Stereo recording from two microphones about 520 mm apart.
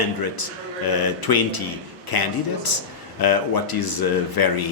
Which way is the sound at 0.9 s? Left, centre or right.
Left.